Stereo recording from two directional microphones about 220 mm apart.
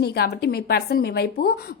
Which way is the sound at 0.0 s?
45° left (ahead or behind).